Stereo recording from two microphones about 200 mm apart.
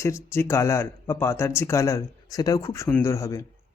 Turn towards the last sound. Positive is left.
turn(degrees=15)  # may be behind; listen again after turning